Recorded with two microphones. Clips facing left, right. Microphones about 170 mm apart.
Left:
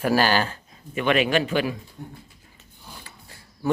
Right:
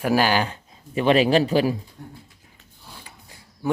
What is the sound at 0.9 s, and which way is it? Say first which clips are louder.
Speech: right 4 dB; 30° right (ahead or behind).